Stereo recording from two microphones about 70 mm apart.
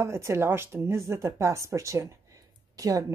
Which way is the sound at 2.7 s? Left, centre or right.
Right.